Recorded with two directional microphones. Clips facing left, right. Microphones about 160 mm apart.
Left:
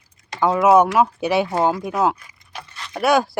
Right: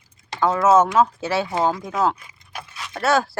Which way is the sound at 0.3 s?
15° left (ahead or behind).